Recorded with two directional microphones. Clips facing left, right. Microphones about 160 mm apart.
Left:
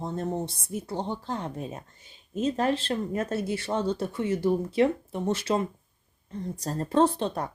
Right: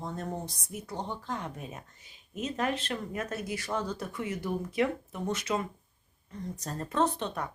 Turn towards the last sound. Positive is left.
turn(degrees=30)  # may be behind; listen again after turning